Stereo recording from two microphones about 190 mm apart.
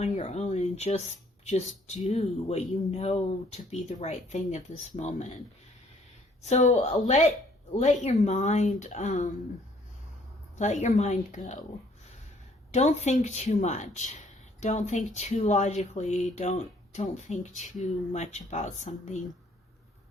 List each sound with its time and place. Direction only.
0.0 s speech: 35° left (ahead or behind)
6.4 s speech: 35° left (ahead or behind)
10.6 s speech: 40° left (ahead or behind)
12.7 s speech: 35° left (ahead or behind)